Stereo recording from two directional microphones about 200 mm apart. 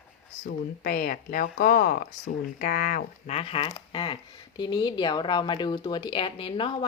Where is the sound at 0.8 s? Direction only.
45° left (ahead or behind).